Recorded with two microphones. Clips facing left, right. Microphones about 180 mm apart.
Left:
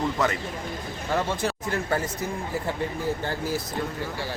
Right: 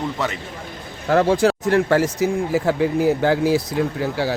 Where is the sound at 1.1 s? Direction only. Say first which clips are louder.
Right 11 dB; 80° right.